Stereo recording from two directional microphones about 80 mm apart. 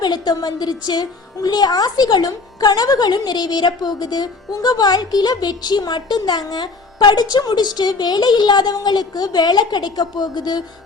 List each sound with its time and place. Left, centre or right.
0.0 s a woman's voice: left